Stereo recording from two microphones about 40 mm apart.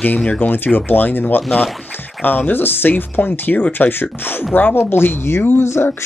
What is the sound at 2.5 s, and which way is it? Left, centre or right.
Speech, left.